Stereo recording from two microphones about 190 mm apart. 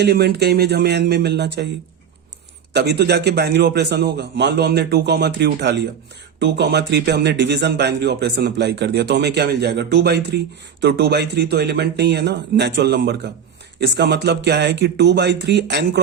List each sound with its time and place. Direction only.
0.0 s speech: 60° right (ahead or behind)
2.7 s speech: 60° right (ahead or behind)